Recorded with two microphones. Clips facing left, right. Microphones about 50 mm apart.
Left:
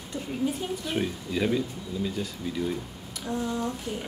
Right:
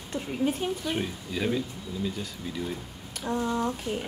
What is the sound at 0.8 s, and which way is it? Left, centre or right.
Speech, centre.